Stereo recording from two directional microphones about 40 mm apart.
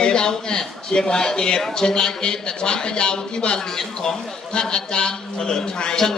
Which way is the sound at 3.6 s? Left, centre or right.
Centre.